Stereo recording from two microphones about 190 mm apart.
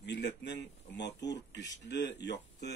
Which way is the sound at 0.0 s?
65° left (ahead or behind).